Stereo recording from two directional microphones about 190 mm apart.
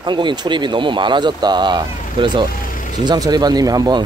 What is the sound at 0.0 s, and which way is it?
Speech, 25° right (ahead or behind).